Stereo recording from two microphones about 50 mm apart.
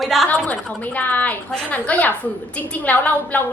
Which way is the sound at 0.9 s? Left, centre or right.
Left.